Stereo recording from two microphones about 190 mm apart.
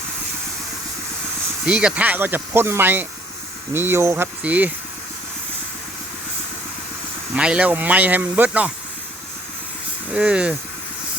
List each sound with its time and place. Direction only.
1.6 s speech: 5° right (ahead or behind)
7.3 s speech: 5° right (ahead or behind)
10.1 s speech: 5° right (ahead or behind)